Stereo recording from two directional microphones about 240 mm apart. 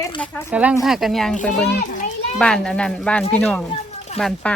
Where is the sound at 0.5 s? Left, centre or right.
Centre.